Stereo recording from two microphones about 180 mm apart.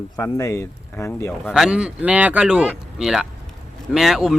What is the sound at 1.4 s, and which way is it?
Speech, centre (ahead or behind).